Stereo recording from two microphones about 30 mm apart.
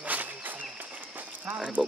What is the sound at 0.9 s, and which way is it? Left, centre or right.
Run, right.